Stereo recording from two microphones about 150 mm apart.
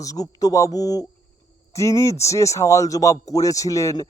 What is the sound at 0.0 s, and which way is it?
Speech, 25° left (ahead or behind).